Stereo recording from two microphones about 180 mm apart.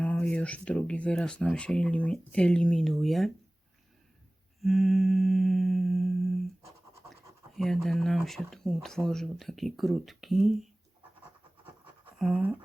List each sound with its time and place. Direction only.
0.0 s speech: 5° left (ahead or behind)
4.6 s humming: centre (ahead or behind)
7.1 s speech: centre (ahead or behind)
12.2 s speech: centre (ahead or behind)